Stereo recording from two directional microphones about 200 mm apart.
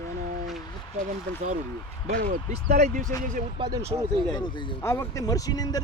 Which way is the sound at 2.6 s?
35° right (ahead or behind).